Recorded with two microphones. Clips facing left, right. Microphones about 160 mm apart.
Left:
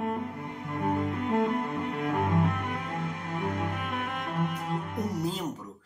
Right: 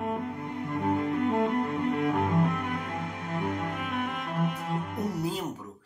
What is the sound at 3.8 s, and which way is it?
Cello, centre (ahead or behind).